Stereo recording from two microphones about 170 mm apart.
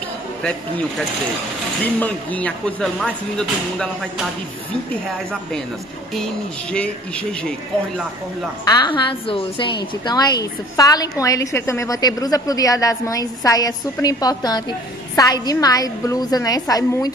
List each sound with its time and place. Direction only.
0.4 s speech: 5° left (ahead or behind)
6.7 s speech: 5° left (ahead or behind)
8.6 s a woman's voice: 25° left (ahead or behind)